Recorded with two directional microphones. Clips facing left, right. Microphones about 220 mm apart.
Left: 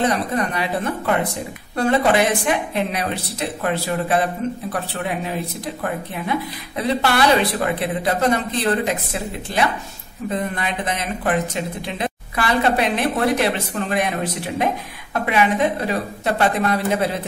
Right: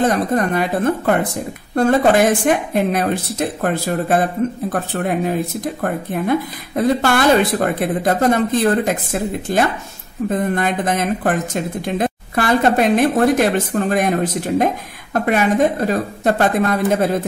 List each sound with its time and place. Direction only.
0.0 s speech: 45° right (ahead or behind)